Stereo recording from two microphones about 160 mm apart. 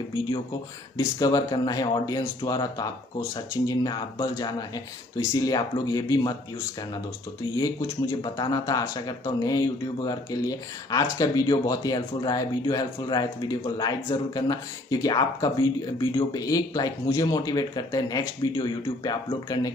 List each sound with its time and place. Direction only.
0.9 s speech: 25° left (ahead or behind)
7.5 s speech: 20° left (ahead or behind)